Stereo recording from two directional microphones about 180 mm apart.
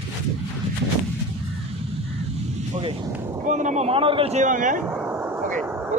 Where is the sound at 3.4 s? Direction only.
45° right (ahead or behind).